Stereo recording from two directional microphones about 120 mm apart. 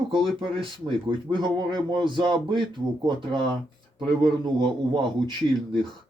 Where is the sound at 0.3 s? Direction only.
45° right (ahead or behind).